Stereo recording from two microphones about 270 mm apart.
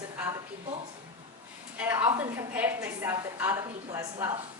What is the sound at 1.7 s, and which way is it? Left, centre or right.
A woman's voice, centre.